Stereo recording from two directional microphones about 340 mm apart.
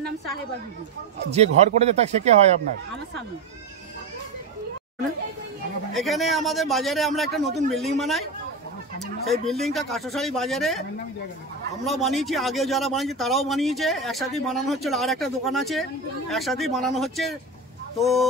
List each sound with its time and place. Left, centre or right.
1.3 s speech: centre
5.9 s a man's voice: centre
11.8 s a man's voice: centre